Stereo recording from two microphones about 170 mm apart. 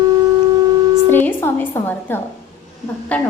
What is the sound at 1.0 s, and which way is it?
Music, 10° left (ahead or behind).